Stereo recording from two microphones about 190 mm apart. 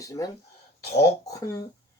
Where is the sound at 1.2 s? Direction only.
15° left (ahead or behind).